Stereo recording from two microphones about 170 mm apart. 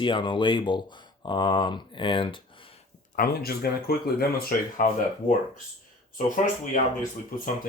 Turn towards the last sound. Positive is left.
turn(degrees=50)  # may be behind; listen again after turning